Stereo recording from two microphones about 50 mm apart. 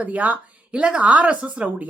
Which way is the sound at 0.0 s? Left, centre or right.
Right.